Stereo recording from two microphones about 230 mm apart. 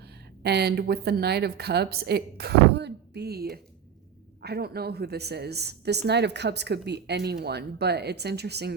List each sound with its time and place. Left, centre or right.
0.4 s speech: right